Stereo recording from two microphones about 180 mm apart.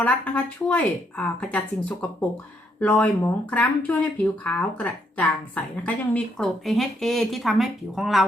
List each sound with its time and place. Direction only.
0.0 s speech: 5° left (ahead or behind)